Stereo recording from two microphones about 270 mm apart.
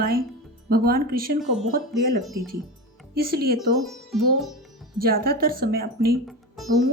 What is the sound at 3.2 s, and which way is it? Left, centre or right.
Speech, right.